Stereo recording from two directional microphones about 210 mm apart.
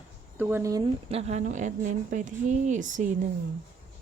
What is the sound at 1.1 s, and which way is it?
Speech, 30° right (ahead or behind).